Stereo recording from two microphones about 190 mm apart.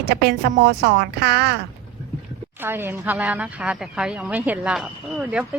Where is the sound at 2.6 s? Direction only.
10° right (ahead or behind).